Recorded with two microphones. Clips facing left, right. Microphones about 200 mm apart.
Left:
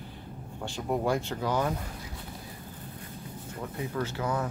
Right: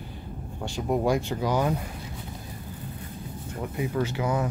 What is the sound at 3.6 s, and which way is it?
Speech, 15° right (ahead or behind).